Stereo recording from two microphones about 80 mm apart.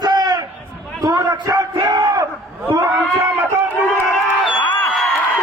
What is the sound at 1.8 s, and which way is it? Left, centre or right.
Battle cry, right.